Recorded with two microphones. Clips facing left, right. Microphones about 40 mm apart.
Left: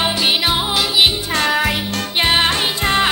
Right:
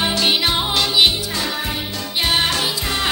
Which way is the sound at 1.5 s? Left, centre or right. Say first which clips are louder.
Left 7 dB; left.